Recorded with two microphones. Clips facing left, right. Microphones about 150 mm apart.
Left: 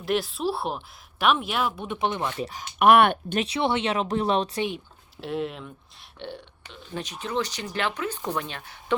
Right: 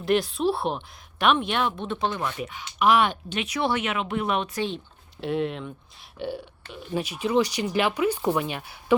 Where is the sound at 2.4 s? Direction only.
45° left (ahead or behind).